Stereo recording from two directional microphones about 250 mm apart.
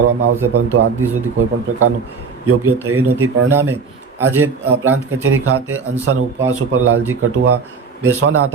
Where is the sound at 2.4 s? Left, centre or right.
Right.